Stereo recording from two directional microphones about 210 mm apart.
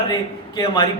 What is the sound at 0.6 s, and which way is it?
Speech, 20° left (ahead or behind).